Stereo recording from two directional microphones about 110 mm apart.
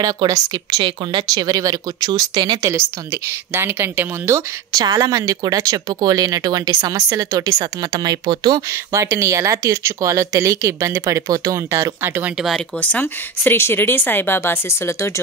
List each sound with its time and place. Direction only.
0.0 s speech: 40° right (ahead or behind)
2.6 s speech: 25° right (ahead or behind)
4.7 s speech: 35° right (ahead or behind)
8.9 s speech: 25° right (ahead or behind)
12.4 s speech: centre (ahead or behind)
12.8 s speech: 15° left (ahead or behind)